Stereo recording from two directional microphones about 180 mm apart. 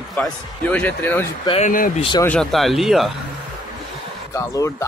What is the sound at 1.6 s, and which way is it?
Speech, 50° left (ahead or behind).